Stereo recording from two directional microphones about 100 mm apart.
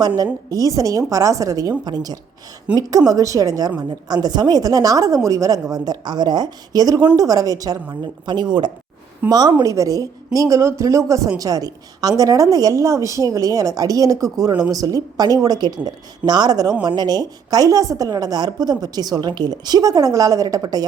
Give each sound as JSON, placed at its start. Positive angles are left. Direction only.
{"t": 0.5, "sound": "a woman's voice", "side_deg": -35}
{"t": 2.7, "sound": "a woman's voice", "side_deg": -10}
{"t": 3.1, "sound": "a woman's voice", "side_deg": -35}